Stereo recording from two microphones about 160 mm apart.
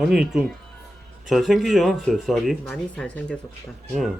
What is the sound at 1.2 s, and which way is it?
Speech, centre (ahead or behind).